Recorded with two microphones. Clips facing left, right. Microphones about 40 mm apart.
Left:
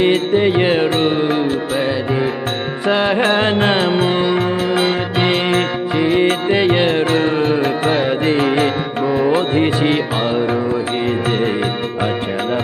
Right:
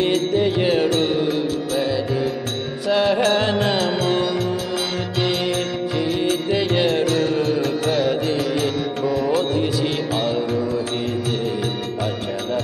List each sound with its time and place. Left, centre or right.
0.0 s music: left
2.9 s music: left